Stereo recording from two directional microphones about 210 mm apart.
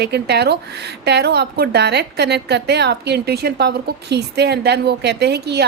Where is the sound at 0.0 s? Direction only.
50° right (ahead or behind).